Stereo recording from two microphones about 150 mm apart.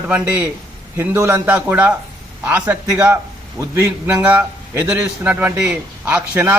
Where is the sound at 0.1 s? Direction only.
10° right (ahead or behind).